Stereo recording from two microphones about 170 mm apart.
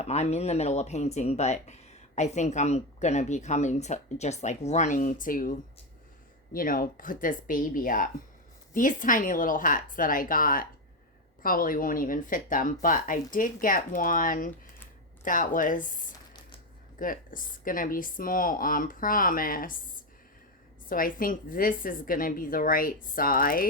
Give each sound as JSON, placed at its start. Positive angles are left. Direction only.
{"t": 0.0, "sound": "speech", "side_deg": 40}
{"t": 20.9, "sound": "speech", "side_deg": 55}